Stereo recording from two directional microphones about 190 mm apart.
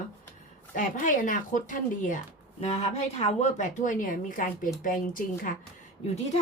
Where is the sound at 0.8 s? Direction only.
45° left (ahead or behind).